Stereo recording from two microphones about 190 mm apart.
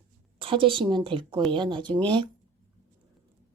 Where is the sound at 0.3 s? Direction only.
30° right (ahead or behind).